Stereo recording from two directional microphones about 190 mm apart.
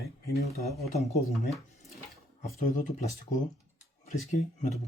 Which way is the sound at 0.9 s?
35° left (ahead or behind).